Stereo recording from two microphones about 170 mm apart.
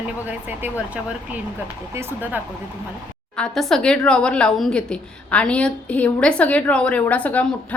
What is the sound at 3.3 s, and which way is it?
A woman's voice, 5° left (ahead or behind).